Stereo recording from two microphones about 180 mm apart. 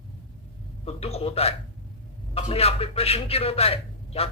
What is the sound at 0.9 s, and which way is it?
A man's voice, 35° left (ahead or behind).